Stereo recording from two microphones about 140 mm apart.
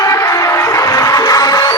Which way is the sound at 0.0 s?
20° left (ahead or behind).